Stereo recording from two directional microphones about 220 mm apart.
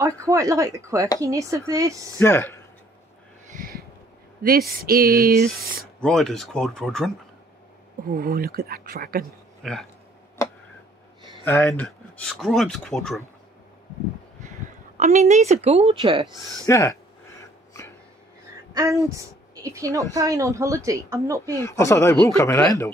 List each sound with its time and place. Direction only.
0.0 s a woman's voice: 15° right (ahead or behind)
2.1 s speech: 10° left (ahead or behind)
3.5 s a sound: 45° right (ahead or behind)
4.4 s speech: 40° right (ahead or behind)
6.0 s speech: centre (ahead or behind)
8.1 s speech: 45° right (ahead or behind)
9.6 s speech: centre (ahead or behind)
11.6 s speech: 5° left (ahead or behind)
15.0 s a woman's voice: 30° right (ahead or behind)
16.3 s speech: centre (ahead or behind)
16.6 s speech: 15° left (ahead or behind)
18.7 s a woman's voice: 15° right (ahead or behind)
21.6 s speech: 15° left (ahead or behind)